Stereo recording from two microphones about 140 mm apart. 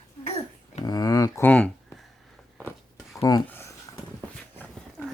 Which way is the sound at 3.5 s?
15° left (ahead or behind).